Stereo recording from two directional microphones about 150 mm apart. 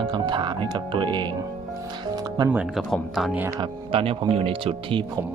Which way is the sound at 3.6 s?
35° right (ahead or behind).